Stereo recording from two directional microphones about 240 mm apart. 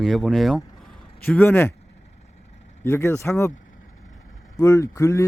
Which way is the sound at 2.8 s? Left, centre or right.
Centre.